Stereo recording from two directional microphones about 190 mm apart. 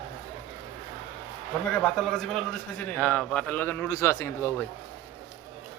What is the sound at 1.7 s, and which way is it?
A man's voice, 5° left (ahead or behind).